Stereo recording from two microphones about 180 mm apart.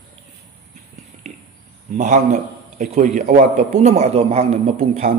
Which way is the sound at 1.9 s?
45° right (ahead or behind).